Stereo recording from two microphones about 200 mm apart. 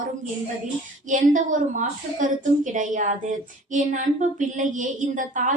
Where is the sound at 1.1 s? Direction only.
40° right (ahead or behind).